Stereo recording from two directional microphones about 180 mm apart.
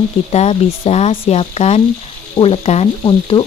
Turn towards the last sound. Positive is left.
turn(degrees=25)  # may be behind; listen again after turning